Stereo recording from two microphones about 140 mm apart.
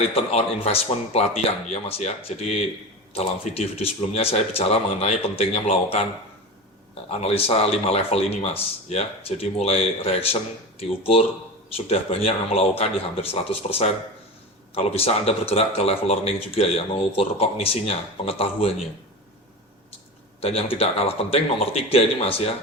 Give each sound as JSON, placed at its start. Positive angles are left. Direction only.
{"t": 0.1, "sound": "speech", "side_deg": 45}
{"t": 7.1, "sound": "speech", "side_deg": 45}
{"t": 20.4, "sound": "speech", "side_deg": 45}